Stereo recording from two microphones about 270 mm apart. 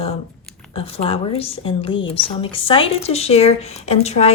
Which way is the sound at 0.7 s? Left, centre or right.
Left.